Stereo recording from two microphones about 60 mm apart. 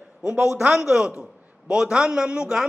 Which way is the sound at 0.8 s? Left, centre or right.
Centre.